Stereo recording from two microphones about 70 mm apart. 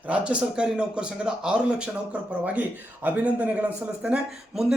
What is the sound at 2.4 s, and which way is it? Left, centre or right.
Speech, right.